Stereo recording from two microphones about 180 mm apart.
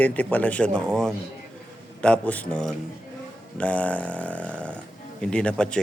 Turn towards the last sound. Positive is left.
turn(degrees=5)  # may be behind; listen again after turning